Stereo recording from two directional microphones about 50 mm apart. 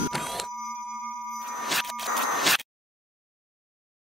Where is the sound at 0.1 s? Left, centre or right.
Centre.